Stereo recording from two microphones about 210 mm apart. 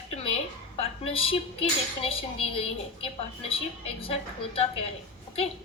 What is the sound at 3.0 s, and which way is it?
A woman's voice, 25° left (ahead or behind).